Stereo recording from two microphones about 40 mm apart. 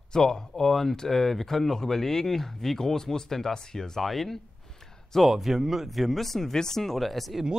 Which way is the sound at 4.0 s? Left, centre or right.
Centre.